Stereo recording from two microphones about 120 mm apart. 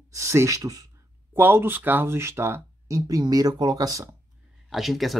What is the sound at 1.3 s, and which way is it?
Speech, 20° right (ahead or behind).